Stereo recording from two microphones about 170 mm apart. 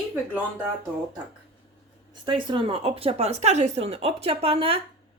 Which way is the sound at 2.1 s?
30° right (ahead or behind).